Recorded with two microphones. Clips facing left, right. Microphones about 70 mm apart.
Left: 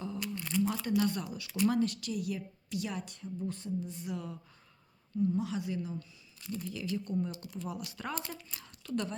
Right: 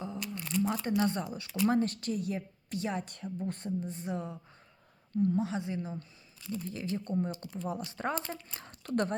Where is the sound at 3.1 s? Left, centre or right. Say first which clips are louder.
Right 1 dB; right.